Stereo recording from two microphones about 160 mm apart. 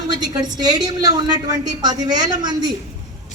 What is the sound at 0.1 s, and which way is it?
A woman's voice, 25° right (ahead or behind).